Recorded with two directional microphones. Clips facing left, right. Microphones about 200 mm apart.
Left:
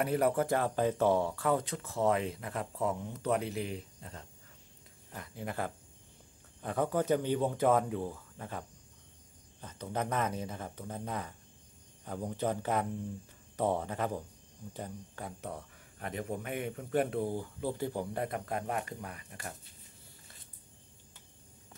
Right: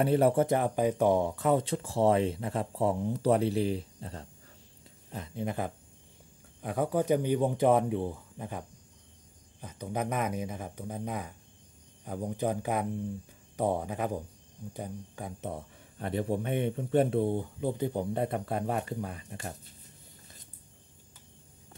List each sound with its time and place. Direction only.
0.0 s speech: 30° right (ahead or behind)
5.1 s speech: 20° right (ahead or behind)